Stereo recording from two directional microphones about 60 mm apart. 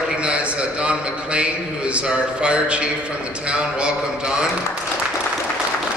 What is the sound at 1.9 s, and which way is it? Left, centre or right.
Speech, centre.